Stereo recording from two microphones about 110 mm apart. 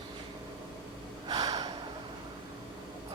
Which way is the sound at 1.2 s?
35° right (ahead or behind).